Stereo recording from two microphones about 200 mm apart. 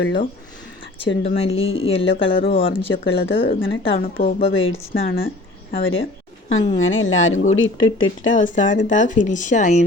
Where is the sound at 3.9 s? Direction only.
45° left (ahead or behind).